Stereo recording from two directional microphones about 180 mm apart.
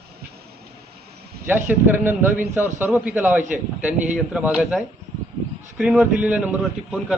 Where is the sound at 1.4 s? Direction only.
10° right (ahead or behind).